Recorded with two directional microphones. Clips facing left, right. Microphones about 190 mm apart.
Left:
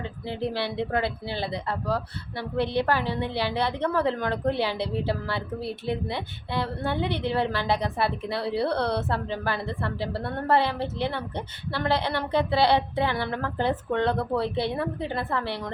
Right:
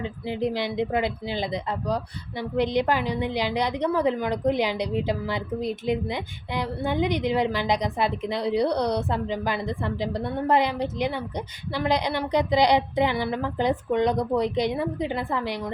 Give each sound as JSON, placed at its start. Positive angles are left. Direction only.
{"t": 0.0, "sound": "a woman's voice", "side_deg": -15}